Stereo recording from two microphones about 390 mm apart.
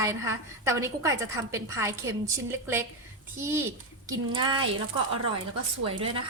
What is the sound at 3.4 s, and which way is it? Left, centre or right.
A woman's voice, centre.